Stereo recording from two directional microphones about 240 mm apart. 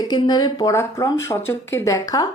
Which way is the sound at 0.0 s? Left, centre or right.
Centre.